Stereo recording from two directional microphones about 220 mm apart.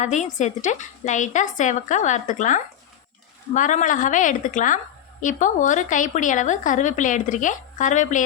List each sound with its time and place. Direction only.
0.0 s a woman's voice: 35° left (ahead or behind)